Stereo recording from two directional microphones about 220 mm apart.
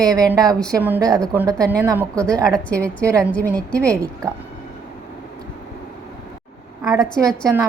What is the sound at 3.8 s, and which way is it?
Speech, 15° right (ahead or behind).